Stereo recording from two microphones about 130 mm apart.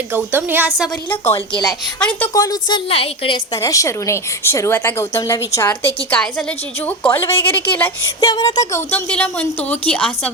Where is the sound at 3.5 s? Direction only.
25° left (ahead or behind).